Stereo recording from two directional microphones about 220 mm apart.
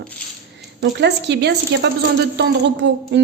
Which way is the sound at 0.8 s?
50° right (ahead or behind).